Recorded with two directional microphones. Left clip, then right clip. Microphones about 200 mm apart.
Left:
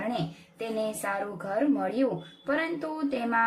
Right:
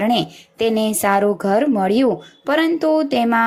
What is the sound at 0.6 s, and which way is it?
Speech, 35° right (ahead or behind).